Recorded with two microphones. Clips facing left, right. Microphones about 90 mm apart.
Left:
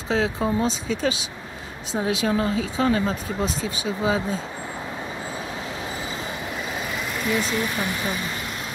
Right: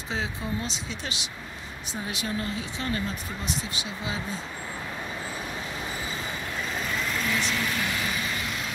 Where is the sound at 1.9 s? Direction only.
50° left (ahead or behind).